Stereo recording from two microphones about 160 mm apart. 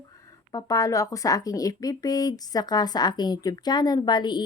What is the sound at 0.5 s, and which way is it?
Speech, 20° left (ahead or behind).